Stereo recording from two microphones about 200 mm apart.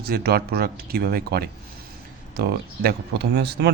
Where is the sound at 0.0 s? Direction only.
50° right (ahead or behind).